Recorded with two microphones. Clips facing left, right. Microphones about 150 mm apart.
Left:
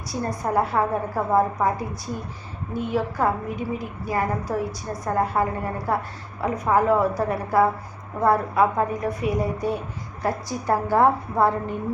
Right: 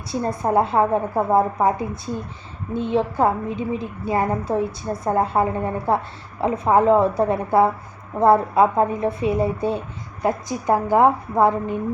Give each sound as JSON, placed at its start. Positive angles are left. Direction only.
{"t": 0.1, "sound": "a woman's voice", "side_deg": -25}